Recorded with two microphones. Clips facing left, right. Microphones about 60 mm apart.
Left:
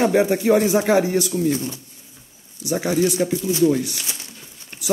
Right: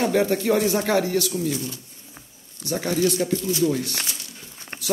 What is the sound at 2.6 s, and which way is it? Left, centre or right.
A man's voice, centre.